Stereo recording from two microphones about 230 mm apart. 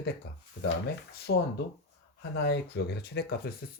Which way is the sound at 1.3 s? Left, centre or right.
Left.